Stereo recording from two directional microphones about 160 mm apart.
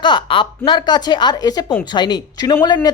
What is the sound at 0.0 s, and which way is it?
A woman's voice, 30° left (ahead or behind).